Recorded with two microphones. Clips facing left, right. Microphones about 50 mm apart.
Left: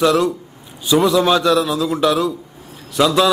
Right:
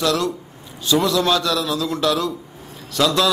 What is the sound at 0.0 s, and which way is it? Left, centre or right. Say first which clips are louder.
A man's voice: left 5 dB; centre.